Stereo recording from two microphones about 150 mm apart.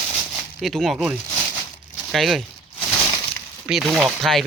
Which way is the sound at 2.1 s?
Centre (ahead or behind).